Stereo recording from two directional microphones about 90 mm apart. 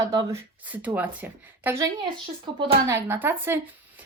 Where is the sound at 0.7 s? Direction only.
20° right (ahead or behind).